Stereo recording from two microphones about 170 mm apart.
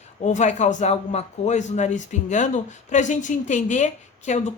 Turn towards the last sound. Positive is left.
turn(degrees=45)  # may be behind; listen again after turning